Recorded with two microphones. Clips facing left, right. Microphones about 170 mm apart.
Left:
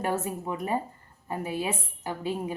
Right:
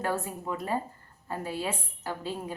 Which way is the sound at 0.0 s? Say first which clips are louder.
Left 2 dB; 20° left (ahead or behind).